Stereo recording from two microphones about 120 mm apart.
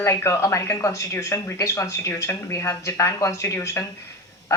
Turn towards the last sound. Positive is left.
turn(degrees=20)  # may be behind; listen again after turning